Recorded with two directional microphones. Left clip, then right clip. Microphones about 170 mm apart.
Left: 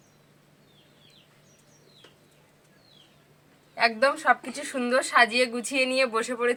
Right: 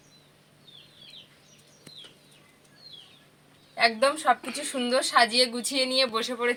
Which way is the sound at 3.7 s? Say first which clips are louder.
Even; 10° right (ahead or behind).